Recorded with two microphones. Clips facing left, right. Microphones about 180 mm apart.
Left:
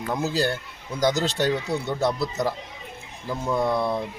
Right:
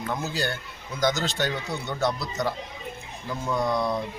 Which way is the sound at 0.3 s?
30° left (ahead or behind).